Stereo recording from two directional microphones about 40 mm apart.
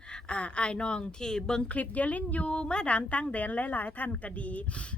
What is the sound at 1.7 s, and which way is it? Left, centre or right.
A woman's voice, left.